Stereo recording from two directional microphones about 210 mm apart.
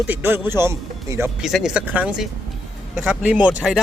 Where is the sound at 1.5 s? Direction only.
Centre (ahead or behind).